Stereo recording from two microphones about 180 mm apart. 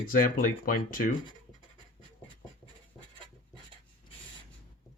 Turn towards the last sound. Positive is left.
turn(degrees=5)  # may be behind; listen again after turning